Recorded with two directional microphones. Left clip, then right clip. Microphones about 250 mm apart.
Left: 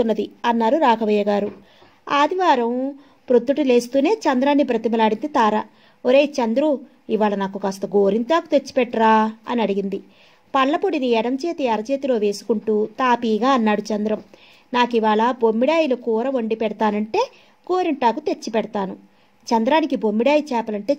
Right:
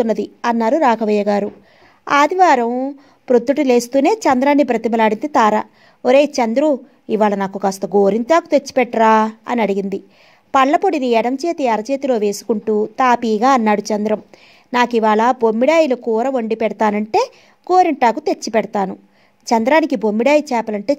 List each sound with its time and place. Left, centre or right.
0.4 s a woman's voice: right